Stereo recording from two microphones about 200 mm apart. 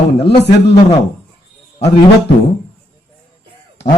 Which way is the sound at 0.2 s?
55° left (ahead or behind).